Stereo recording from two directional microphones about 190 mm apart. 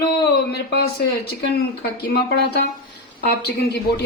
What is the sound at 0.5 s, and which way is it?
Speech, 60° left (ahead or behind).